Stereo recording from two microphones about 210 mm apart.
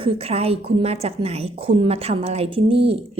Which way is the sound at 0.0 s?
30° right (ahead or behind).